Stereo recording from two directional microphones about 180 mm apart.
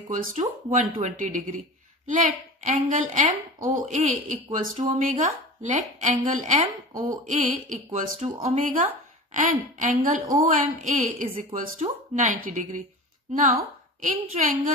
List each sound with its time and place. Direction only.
0.1 s a woman's voice: 45° right (ahead or behind)